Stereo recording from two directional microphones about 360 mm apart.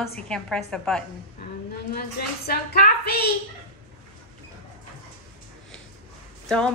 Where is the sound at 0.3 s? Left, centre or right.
Centre.